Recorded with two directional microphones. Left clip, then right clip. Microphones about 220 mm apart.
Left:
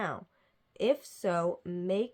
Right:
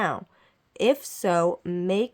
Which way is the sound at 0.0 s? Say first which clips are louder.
Right 9 dB; 30° right (ahead or behind).